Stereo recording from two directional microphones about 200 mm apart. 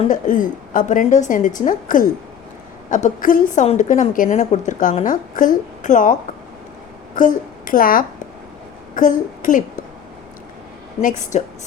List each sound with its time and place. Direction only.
0.0 s a woman's voice: 40° left (ahead or behind)
11.2 s a woman's voice: 40° left (ahead or behind)